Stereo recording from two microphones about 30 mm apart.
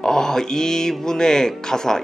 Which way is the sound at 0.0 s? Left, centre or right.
Centre.